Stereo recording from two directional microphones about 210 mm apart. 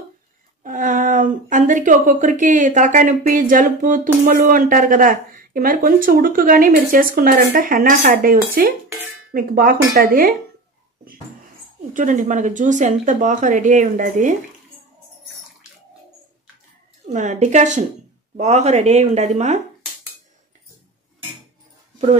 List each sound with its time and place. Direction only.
0.7 s a woman's voice: 40° right (ahead or behind)
11.9 s a woman's voice: 40° right (ahead or behind)
17.1 s a woman's voice: 35° right (ahead or behind)